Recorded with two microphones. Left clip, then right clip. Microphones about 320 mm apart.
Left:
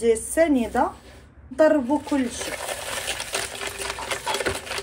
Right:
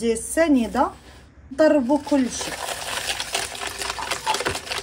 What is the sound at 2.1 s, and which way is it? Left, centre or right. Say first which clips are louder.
Sewing machine: right 3 dB; centre.